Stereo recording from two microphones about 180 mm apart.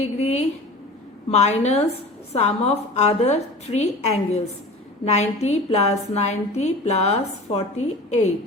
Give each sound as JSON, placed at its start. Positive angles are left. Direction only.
{"t": 0.0, "sound": "a woman's voice", "side_deg": 35}